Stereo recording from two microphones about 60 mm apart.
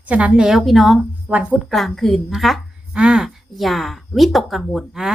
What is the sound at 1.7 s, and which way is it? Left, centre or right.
Speech, centre.